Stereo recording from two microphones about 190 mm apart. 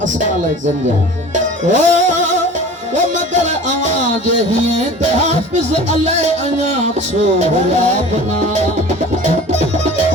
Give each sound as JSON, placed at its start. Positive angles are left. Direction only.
{"t": 1.7, "sound": "music", "side_deg": -40}
{"t": 3.8, "sound": "music", "side_deg": -35}